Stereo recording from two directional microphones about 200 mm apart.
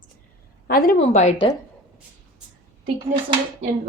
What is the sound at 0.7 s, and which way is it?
Speech, 35° left (ahead or behind).